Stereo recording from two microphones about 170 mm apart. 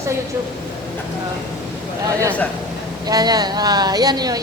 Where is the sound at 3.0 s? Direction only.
20° right (ahead or behind).